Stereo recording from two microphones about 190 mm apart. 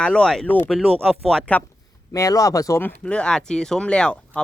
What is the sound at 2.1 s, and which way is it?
Speech, 20° left (ahead or behind).